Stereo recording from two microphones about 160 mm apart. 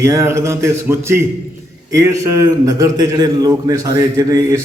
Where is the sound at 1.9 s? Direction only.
20° right (ahead or behind).